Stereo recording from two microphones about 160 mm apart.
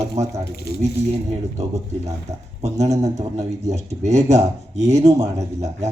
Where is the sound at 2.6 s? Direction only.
45° right (ahead or behind).